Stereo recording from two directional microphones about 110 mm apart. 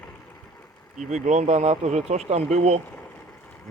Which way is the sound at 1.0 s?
90° right.